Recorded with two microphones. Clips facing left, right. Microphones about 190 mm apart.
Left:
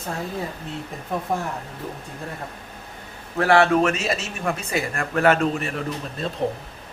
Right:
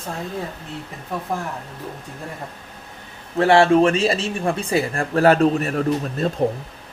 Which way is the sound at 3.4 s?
25° right (ahead or behind).